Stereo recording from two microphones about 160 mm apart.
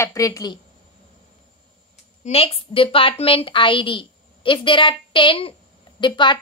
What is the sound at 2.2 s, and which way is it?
A woman's voice, 35° left (ahead or behind).